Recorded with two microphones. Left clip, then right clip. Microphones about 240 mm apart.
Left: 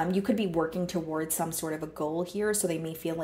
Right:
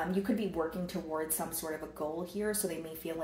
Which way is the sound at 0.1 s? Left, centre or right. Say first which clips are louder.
Left 5 dB; left.